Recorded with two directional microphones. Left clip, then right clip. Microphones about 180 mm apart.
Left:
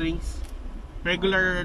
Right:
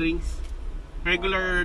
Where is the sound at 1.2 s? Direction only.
30° left (ahead or behind).